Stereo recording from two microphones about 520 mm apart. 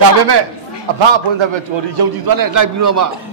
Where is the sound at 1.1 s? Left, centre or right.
Right.